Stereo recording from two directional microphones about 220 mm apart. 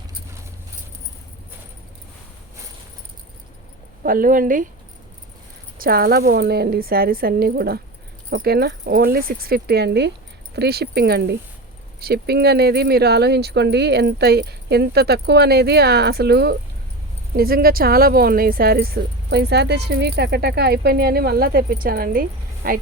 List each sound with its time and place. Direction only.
4.0 s speech: 40° right (ahead or behind)
5.8 s speech: 45° right (ahead or behind)